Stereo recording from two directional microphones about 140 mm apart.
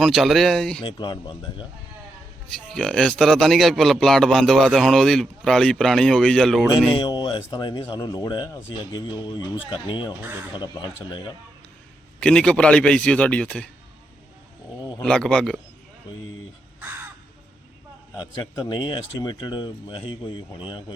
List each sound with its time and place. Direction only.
0.0 s a man's voice: centre (ahead or behind)
0.8 s a man's voice: 35° left (ahead or behind)
2.6 s a man's voice: 5° left (ahead or behind)
6.7 s a man's voice: 35° left (ahead or behind)
10.2 s speech: 15° right (ahead or behind)
10.6 s a man's voice: 30° left (ahead or behind)
12.2 s a man's voice: 5° left (ahead or behind)
14.8 s a sound: 25° left (ahead or behind)
15.0 s a man's voice: 5° left (ahead or behind)
18.6 s a man's voice: 30° left (ahead or behind)